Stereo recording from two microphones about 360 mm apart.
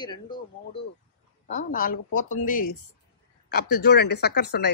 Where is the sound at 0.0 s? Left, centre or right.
Centre.